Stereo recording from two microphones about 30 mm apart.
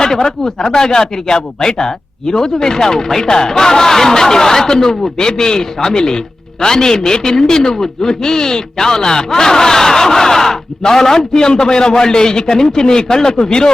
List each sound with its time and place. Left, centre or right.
0.0 s a man's voice: centre